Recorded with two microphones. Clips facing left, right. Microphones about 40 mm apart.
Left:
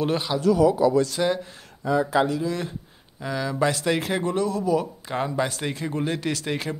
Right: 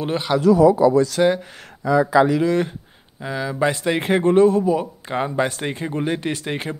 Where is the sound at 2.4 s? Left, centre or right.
Right.